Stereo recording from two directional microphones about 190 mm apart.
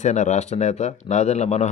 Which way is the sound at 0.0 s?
40° left (ahead or behind).